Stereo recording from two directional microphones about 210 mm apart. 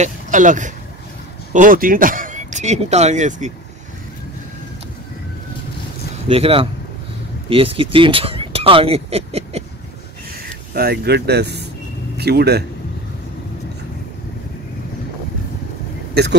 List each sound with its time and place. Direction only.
0.0 s speech: 35° right (ahead or behind)
6.2 s speech: 25° right (ahead or behind)
10.7 s speech: 45° right (ahead or behind)